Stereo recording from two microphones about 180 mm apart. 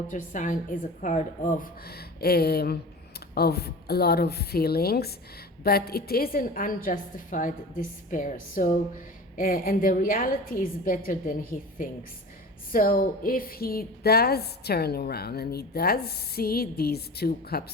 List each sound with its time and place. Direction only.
0.1 s a woman's voice: 45° left (ahead or behind)